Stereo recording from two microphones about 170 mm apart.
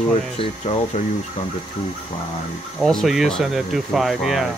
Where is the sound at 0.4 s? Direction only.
40° left (ahead or behind).